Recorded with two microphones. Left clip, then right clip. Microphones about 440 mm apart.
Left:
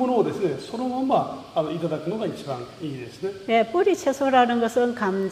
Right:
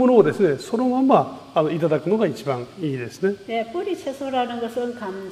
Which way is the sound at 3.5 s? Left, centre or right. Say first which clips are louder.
Left 5 dB; left.